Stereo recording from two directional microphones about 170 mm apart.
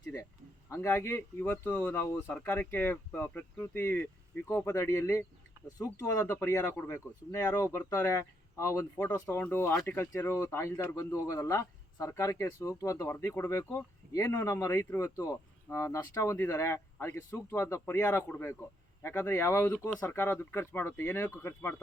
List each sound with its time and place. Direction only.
0.7 s speech: 15° left (ahead or behind)